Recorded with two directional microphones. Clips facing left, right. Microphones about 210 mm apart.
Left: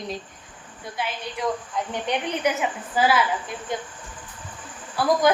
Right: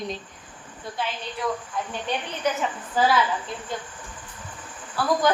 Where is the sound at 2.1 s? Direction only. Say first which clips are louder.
Left 3 dB; 15° left (ahead or behind).